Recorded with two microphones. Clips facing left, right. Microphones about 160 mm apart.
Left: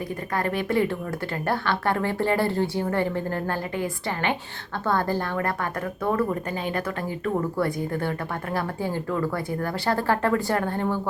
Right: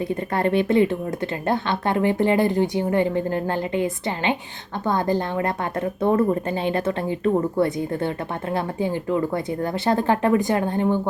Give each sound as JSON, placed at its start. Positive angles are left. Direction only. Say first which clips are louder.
{"t": 0.3, "sound": "a woman's voice", "louder": "right 5 dB", "side_deg": -25}